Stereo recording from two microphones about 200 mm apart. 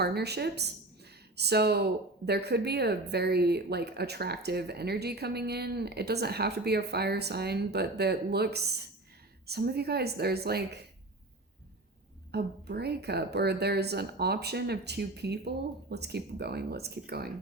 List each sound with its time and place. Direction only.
0.0 s a woman's voice: 55° right (ahead or behind)
12.3 s a woman's voice: 55° right (ahead or behind)